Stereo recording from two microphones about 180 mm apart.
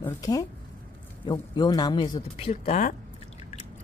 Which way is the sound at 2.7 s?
45° left (ahead or behind).